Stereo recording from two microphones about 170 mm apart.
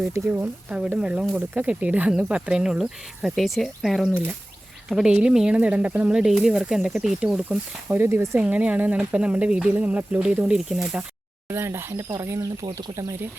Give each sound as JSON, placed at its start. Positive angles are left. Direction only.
{"t": 0.1, "sound": "speech", "side_deg": -10}
{"t": 11.4, "sound": "speech", "side_deg": -15}